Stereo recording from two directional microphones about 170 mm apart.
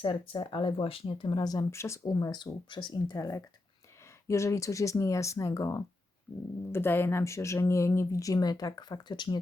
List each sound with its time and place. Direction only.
0.0 s speech: 30° left (ahead or behind)